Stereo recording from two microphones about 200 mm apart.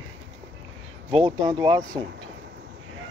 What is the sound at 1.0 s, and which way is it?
Speech, 25° right (ahead or behind).